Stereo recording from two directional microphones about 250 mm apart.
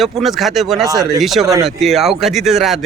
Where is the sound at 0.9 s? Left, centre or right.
Centre.